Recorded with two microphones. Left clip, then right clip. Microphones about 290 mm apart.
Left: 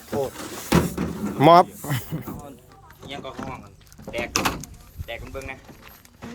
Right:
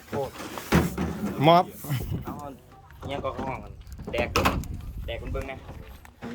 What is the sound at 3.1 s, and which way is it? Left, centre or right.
Speech, centre.